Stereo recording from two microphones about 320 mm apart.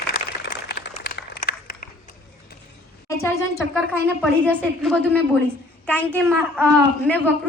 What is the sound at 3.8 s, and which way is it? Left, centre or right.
A woman's voice, centre.